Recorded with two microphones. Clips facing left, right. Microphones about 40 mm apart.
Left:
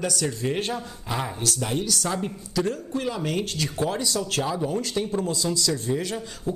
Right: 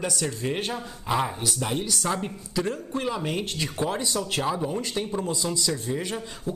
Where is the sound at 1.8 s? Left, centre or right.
Right.